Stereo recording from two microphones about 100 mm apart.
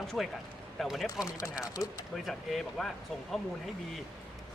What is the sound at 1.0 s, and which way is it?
Speech, 30° left (ahead or behind).